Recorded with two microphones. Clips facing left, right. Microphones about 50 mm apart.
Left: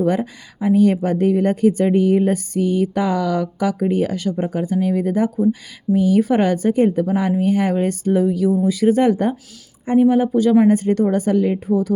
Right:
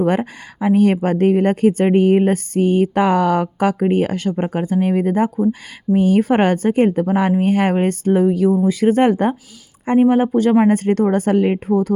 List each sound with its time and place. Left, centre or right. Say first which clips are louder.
0.0 s speech: right 1 dB; right